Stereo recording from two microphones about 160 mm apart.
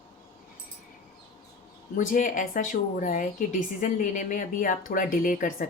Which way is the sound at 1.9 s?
55° left (ahead or behind).